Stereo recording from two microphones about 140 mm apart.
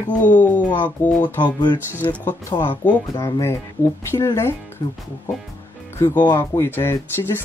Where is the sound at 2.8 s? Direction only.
20° left (ahead or behind).